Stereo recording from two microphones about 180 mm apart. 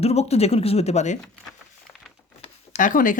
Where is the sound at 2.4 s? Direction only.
45° left (ahead or behind).